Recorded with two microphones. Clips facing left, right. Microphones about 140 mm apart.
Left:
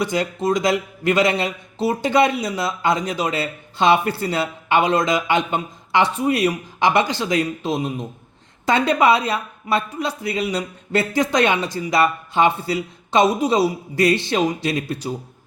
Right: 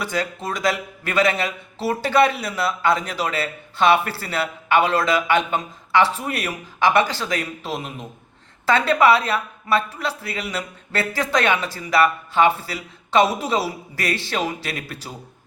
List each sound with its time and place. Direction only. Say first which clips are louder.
0.0 s a man's voice: left 5 dB; 20° left (ahead or behind)